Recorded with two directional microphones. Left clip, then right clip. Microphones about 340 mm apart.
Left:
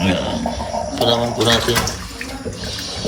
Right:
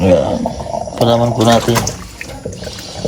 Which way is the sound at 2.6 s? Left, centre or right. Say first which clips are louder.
Left 1 dB; centre.